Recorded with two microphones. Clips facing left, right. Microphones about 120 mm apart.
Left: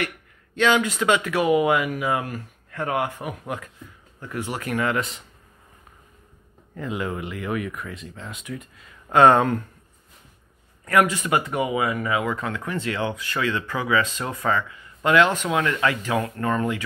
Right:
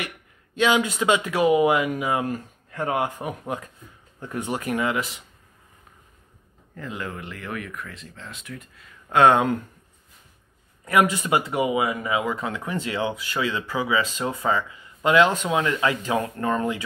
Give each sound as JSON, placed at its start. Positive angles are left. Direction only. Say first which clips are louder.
{"t": 0.6, "sound": "speech", "louder": "left 1 dB", "side_deg": -15}
{"t": 4.9, "sound": "speech", "louder": "left 1 dB", "side_deg": -5}
{"t": 6.7, "sound": "speech", "louder": "left 5 dB", "side_deg": 5}
{"t": 10.9, "sound": "speech", "louder": "even", "side_deg": -20}